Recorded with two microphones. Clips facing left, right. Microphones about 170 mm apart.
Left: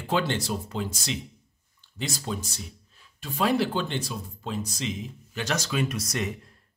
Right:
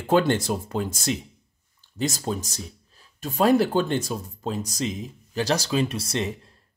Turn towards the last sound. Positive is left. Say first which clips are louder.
# right 3 dB
turn(degrees=-30)  # may be behind; listen again after turning